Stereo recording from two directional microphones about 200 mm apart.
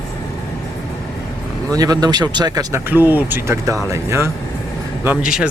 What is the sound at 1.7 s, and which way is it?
Speech, 20° right (ahead or behind).